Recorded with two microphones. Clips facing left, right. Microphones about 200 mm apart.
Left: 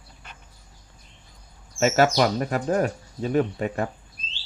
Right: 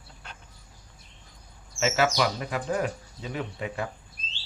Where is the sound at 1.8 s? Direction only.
50° left (ahead or behind).